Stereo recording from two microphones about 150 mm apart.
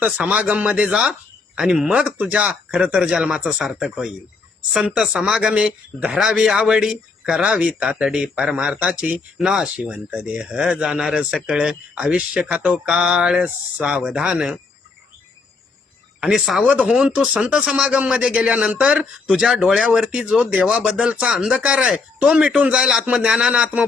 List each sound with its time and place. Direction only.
0.0 s speech: 10° right (ahead or behind)
16.2 s speech: centre (ahead or behind)